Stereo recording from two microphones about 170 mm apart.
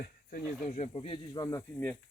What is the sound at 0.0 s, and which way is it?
Speech, 55° left (ahead or behind).